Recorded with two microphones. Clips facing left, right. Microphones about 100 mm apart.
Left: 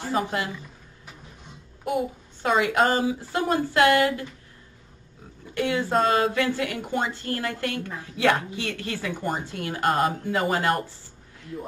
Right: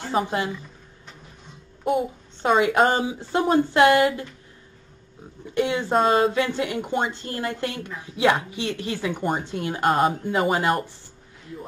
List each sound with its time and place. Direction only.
0.1 s a woman's voice: 25° right (ahead or behind)
1.9 s a woman's voice: 25° right (ahead or behind)
5.5 s a woman's voice: 20° right (ahead or behind)